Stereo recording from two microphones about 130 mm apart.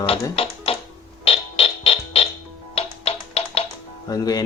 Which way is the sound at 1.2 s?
45° left (ahead or behind).